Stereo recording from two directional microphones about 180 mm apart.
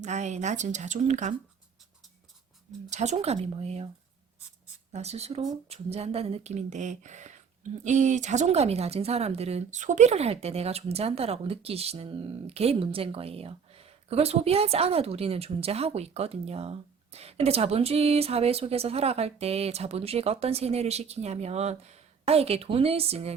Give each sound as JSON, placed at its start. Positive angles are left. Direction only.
{"t": 0.0, "sound": "speech", "side_deg": -40}
{"t": 2.9, "sound": "speech", "side_deg": -40}
{"t": 4.9, "sound": "speech", "side_deg": -35}